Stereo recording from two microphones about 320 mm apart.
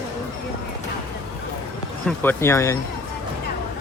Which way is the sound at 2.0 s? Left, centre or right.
Centre.